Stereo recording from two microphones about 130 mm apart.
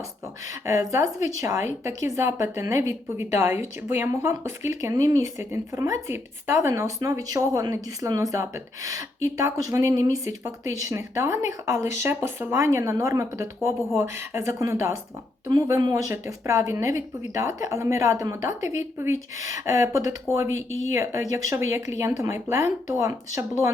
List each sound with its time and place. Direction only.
0.6 s speech: 25° right (ahead or behind)